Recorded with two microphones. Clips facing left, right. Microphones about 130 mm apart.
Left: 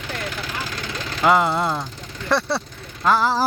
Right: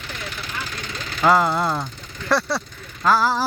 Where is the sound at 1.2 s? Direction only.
15° left (ahead or behind).